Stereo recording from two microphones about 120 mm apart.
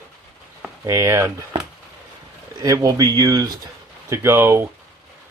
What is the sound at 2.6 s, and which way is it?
Speech, 30° right (ahead or behind).